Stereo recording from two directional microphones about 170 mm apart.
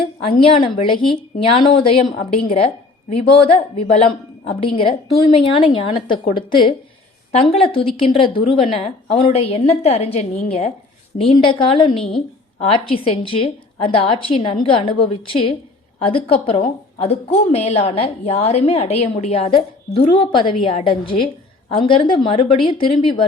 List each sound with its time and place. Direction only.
0.0 s a woman's voice: 30° left (ahead or behind)